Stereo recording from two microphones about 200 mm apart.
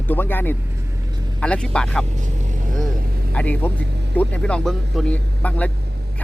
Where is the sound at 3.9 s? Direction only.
55° right (ahead or behind).